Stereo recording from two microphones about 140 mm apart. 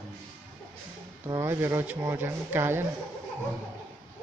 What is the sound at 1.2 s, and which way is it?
Speech, 20° right (ahead or behind).